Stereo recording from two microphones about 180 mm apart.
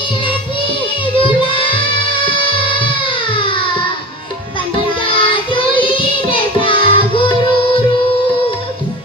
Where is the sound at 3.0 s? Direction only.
30° left (ahead or behind).